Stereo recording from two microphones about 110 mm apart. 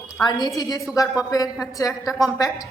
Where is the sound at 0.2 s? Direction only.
40° left (ahead or behind).